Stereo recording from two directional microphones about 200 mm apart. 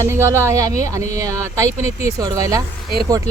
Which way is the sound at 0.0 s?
15° right (ahead or behind).